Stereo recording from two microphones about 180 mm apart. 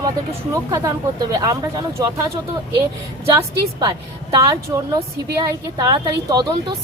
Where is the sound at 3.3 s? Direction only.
20° right (ahead or behind).